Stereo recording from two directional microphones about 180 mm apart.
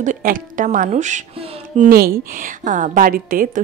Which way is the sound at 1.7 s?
55° right (ahead or behind).